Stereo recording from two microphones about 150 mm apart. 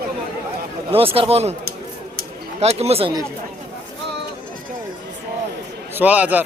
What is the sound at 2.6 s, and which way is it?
Speech, 45° right (ahead or behind).